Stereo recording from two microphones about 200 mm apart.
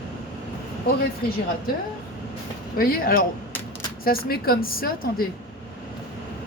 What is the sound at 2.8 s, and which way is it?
A woman's voice, 45° left (ahead or behind).